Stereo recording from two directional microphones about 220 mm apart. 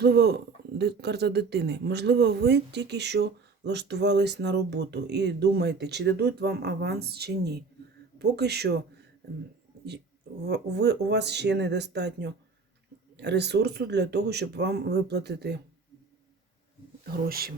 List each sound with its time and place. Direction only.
0.0 s speech: 45° right (ahead or behind)
10.4 s speech: 50° right (ahead or behind)
17.1 s speech: 45° right (ahead or behind)